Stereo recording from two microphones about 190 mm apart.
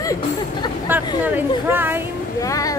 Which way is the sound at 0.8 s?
10° right (ahead or behind).